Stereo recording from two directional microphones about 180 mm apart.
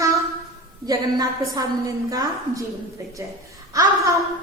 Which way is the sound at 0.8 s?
20° right (ahead or behind).